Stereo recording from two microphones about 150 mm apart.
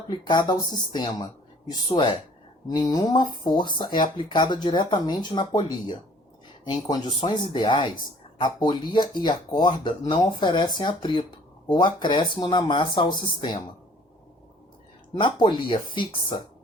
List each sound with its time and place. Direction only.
0.3 s speech: 30° left (ahead or behind)
15.2 s speech: 30° left (ahead or behind)